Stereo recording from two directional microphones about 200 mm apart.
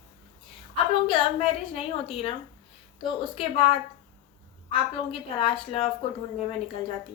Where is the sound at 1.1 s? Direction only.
30° left (ahead or behind).